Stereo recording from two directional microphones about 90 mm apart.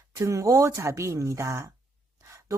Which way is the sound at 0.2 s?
35° right (ahead or behind).